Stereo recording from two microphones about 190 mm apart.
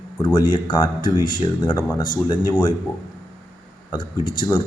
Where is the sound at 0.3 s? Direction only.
25° left (ahead or behind).